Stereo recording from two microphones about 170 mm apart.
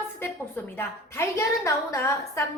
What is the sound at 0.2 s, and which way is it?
A woman's voice, 15° left (ahead or behind).